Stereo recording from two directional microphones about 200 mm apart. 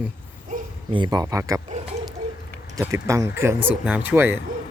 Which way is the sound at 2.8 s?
15° right (ahead or behind).